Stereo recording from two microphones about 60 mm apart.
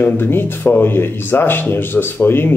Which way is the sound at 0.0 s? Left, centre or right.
Left.